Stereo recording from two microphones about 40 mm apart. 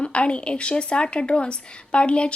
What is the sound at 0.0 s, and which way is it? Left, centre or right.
A woman's voice, left.